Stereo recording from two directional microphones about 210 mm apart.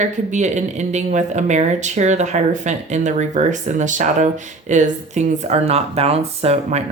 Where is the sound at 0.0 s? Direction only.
35° right (ahead or behind).